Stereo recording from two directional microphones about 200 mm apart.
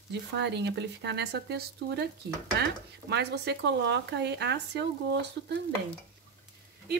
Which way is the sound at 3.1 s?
60° right (ahead or behind).